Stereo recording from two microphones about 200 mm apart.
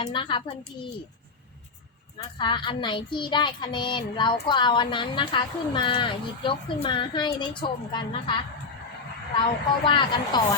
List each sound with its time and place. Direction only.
0.0 s speech: 25° left (ahead or behind)
2.4 s speech: 25° left (ahead or behind)
9.8 s speech: 25° left (ahead or behind)